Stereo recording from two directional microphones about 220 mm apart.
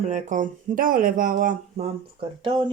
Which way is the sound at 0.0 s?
35° right (ahead or behind).